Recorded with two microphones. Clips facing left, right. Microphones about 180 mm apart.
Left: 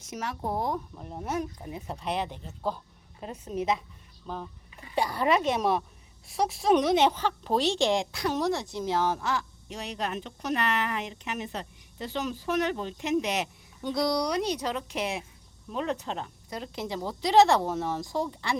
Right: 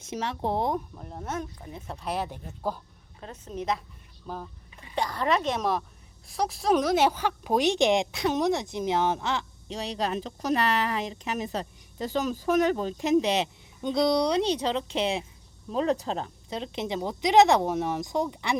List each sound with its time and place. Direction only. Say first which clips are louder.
0.0 s a woman's voice: right 3 dB; 30° right (ahead or behind)
0.9 s speech: left 2 dB; 5° left (ahead or behind)
3.2 s a woman's voice: left 3 dB; 15° left (ahead or behind)
4.3 s speech: even; 5° right (ahead or behind)
4.9 s a woman's voice: left 1 dB; 5° left (ahead or behind); by 18.5 s 15° right (ahead or behind)